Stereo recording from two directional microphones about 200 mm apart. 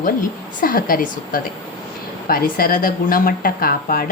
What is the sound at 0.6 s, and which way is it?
A woman's voice, 45° left (ahead or behind).